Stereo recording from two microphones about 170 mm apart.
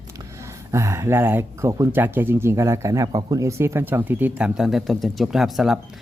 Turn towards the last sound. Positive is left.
turn(degrees=0)  # may be behind; listen again after turning